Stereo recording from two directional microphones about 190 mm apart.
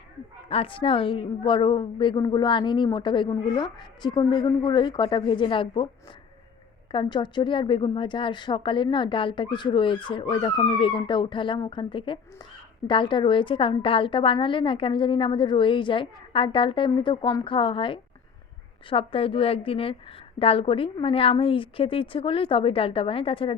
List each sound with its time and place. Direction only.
0.4 s a woman's voice: 30° left (ahead or behind)
6.9 s a woman's voice: 25° left (ahead or behind)